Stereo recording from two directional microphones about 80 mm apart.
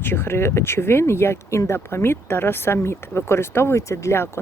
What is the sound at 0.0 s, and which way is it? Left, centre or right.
Speech, left.